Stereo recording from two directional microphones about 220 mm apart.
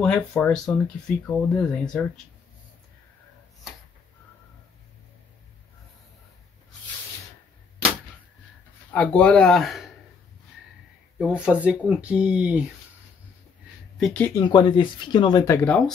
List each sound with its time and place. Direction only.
0.0 s speech: 5° left (ahead or behind)
8.9 s speech: 5° left (ahead or behind)
11.1 s speech: 5° right (ahead or behind)
13.9 s speech: 5° left (ahead or behind)
14.5 s speech: 20° left (ahead or behind)